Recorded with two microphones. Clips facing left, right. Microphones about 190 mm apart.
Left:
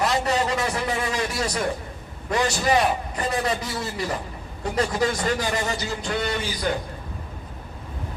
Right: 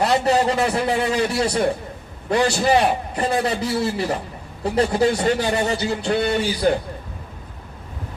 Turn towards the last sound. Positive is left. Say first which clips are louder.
# right 7 dB
turn(degrees=-30)  # may be behind; listen again after turning